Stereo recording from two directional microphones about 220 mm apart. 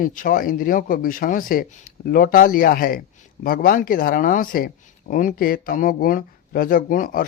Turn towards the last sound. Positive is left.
turn(degrees=40)  # may be behind; listen again after turning